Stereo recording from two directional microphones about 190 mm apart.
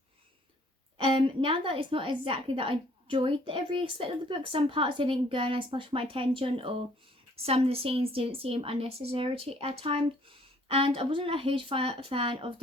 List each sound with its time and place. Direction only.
0.9 s a woman's voice: 30° right (ahead or behind)